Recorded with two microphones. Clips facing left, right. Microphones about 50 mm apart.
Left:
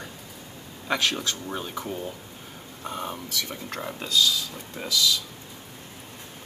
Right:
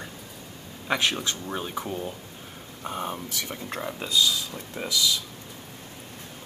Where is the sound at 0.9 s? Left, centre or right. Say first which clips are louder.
Even; centre.